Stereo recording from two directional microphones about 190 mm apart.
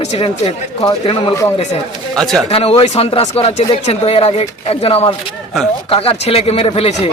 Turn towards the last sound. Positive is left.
turn(degrees=30)  # may be behind; listen again after turning